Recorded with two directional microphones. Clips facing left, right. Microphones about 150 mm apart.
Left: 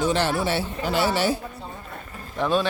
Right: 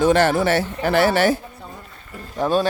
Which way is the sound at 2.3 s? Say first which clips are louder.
Right 3 dB; 40° right (ahead or behind).